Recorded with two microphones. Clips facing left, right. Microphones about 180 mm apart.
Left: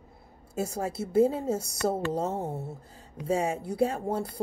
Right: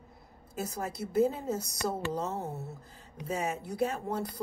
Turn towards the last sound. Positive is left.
turn(degrees=30)  # may be behind; listen again after turning